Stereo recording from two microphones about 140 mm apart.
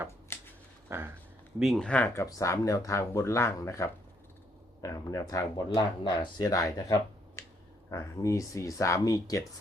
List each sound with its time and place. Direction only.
0.3 s a sound: 15° left (ahead or behind)
0.9 s speech: 15° right (ahead or behind)
1.5 s speech: centre (ahead or behind); by 9.4 s 25° left (ahead or behind)